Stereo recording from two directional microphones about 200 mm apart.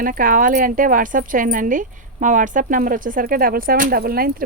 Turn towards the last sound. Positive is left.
turn(degrees=-50)  # may be behind; listen again after turning